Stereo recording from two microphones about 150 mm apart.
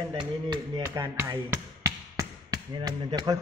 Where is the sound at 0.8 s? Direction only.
20° right (ahead or behind).